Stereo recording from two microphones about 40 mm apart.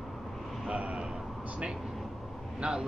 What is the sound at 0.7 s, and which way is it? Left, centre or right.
Speech, right.